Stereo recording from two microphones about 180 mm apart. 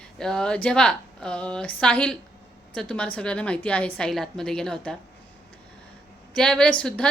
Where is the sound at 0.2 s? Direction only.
5° left (ahead or behind).